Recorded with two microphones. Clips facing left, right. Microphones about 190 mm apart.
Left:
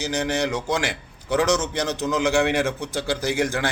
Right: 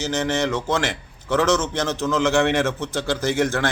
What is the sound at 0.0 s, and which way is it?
A man's voice, 15° left (ahead or behind).